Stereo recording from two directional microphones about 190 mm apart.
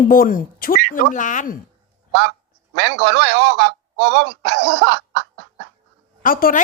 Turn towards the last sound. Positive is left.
turn(degrees=45)  # may be behind; listen again after turning